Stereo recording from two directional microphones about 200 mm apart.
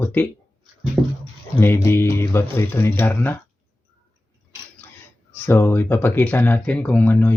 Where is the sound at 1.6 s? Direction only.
10° left (ahead or behind).